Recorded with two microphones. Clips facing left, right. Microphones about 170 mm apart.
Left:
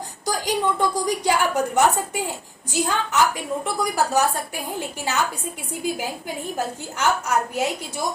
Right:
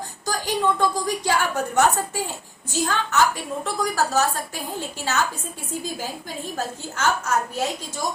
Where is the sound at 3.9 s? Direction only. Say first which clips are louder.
Left 2 dB; 15° left (ahead or behind).